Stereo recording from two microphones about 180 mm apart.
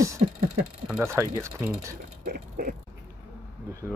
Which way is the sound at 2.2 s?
55° right (ahead or behind).